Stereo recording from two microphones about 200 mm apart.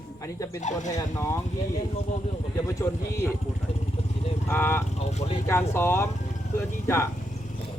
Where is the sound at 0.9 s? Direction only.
15° left (ahead or behind).